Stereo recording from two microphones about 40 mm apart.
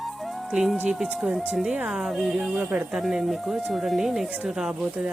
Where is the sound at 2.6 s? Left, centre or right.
Right.